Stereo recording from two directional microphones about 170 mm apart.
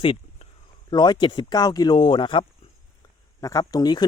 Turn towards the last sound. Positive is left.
turn(degrees=25)  # may be behind; listen again after turning